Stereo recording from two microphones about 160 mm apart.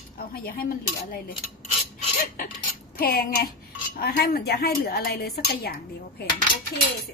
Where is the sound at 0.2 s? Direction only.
65° left (ahead or behind).